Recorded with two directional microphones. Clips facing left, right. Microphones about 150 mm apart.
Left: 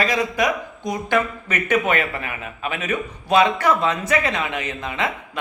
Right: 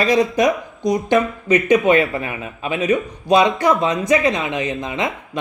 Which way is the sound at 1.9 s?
30° right (ahead or behind).